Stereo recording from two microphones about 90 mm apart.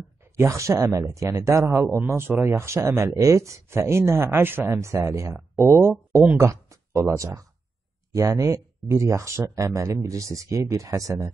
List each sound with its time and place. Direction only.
0.2 s speech: 30° right (ahead or behind)
6.3 s a sound: 35° right (ahead or behind)
8.1 s speech: 35° right (ahead or behind)